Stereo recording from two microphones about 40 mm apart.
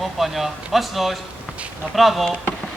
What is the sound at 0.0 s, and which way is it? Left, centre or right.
Speech, centre.